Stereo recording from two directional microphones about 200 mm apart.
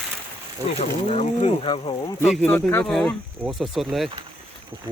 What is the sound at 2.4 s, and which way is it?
Speech, 10° left (ahead or behind).